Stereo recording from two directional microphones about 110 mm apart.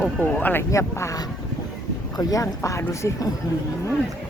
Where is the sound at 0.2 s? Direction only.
15° left (ahead or behind).